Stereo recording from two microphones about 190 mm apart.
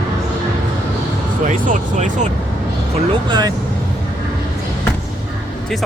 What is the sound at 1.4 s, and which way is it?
Speech, 40° right (ahead or behind).